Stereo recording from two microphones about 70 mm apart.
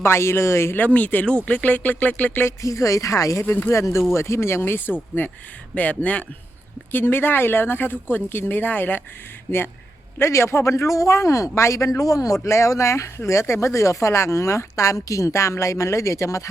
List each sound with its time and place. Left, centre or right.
0.0 s speech: left
0.9 s speech: left
2.6 s speech: left
3.4 s speech: left
3.7 s speech: left
6.9 s speech: left
10.2 s speech: left